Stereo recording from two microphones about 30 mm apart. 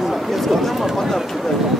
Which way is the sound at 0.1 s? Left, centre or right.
Centre.